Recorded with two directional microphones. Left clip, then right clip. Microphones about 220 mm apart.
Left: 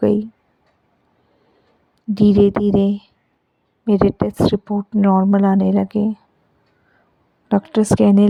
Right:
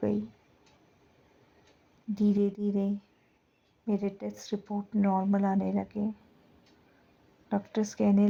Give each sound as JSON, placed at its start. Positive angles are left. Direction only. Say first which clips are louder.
{"t": 2.1, "sound": "speech", "louder": "left 15 dB", "side_deg": 45}
{"t": 7.4, "sound": "speech", "louder": "left 15 dB", "side_deg": 45}